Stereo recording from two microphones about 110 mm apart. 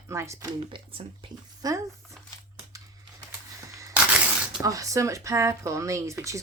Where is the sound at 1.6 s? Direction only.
35° right (ahead or behind).